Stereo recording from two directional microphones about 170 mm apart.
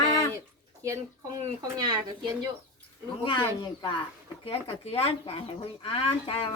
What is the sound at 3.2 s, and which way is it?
Speech, 25° left (ahead or behind).